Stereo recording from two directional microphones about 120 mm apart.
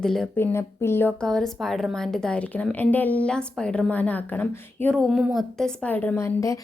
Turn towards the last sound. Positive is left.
turn(degrees=25)  # may be behind; listen again after turning